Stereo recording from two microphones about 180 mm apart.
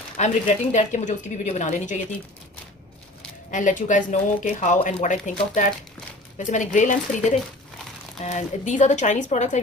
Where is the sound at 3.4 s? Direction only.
45° left (ahead or behind).